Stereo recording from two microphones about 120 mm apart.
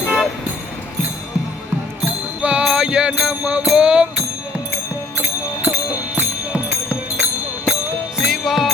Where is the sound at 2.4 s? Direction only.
10° right (ahead or behind).